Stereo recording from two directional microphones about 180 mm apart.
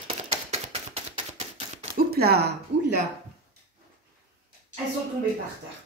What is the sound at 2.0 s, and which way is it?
Speech, 60° right (ahead or behind).